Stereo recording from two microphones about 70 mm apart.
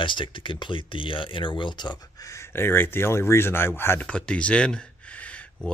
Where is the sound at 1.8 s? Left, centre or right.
Left.